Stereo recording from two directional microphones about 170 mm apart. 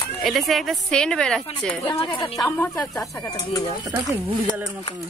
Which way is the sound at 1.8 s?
30° left (ahead or behind).